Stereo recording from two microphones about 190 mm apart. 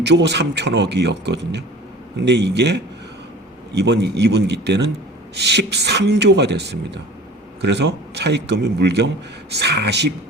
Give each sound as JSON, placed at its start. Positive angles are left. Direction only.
{"t": 0.0, "sound": "speech", "side_deg": -65}